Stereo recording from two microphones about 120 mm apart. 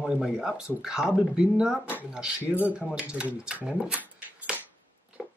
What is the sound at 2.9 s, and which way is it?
Speech, 10° right (ahead or behind).